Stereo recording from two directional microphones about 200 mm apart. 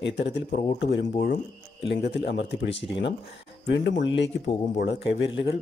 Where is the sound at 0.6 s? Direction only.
35° left (ahead or behind).